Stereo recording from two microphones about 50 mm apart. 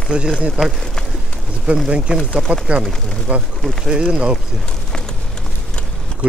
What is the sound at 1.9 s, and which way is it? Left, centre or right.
Speech, right.